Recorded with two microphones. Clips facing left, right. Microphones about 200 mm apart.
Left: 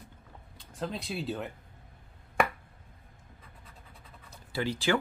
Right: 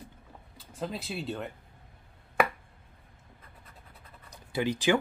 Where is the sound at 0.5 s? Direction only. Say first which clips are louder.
Even; 5° right (ahead or behind).